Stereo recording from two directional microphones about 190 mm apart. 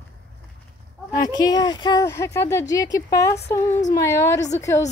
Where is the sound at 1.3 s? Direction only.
20° left (ahead or behind).